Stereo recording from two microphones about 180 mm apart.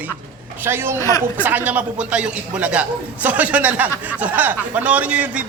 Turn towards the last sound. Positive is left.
turn(degrees=-5)  # may be behind; listen again after turning